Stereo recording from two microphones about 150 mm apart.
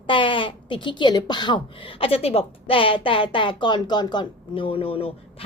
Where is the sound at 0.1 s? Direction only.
35° left (ahead or behind).